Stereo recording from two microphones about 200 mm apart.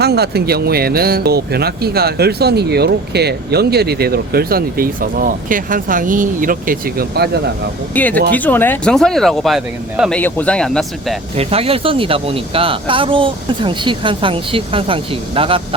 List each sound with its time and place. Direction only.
0.0 s speech: 55° right (ahead or behind)
7.9 s speech: 10° left (ahead or behind)
11.3 s speech: 30° right (ahead or behind)